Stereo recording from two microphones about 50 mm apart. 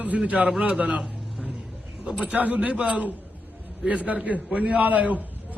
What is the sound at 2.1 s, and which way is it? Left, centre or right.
A man's voice, right.